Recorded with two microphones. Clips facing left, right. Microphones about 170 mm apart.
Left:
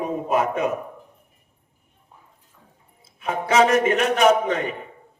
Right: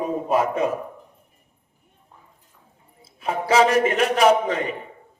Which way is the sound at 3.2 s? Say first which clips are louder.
Even; 30° right (ahead or behind).